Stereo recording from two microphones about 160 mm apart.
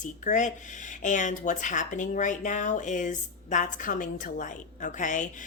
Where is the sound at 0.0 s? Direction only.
50° left (ahead or behind).